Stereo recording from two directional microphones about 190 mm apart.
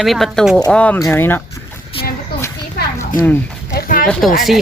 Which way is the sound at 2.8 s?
55° left (ahead or behind).